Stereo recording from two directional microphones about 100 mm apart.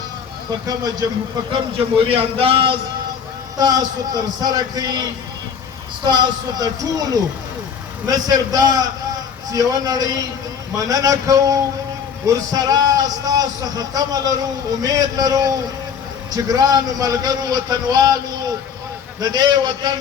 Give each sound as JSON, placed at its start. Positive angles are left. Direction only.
{"t": 2.0, "sound": "a man's voice", "side_deg": -65}
{"t": 3.6, "sound": "a man's voice", "side_deg": -40}
{"t": 6.1, "sound": "a man's voice", "side_deg": -45}